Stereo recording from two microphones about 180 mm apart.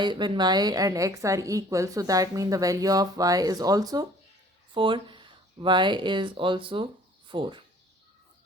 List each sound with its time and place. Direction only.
0.0 s a woman's voice: 25° right (ahead or behind)